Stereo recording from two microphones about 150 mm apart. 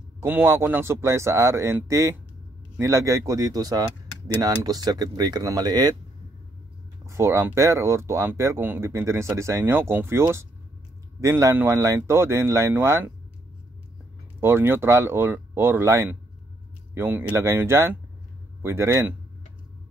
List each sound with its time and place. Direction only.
0.2 s speech: 15° right (ahead or behind)
7.1 s speech: 20° right (ahead or behind)
14.4 s speech: 15° right (ahead or behind)